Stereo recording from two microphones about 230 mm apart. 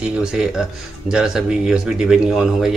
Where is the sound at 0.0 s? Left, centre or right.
Centre.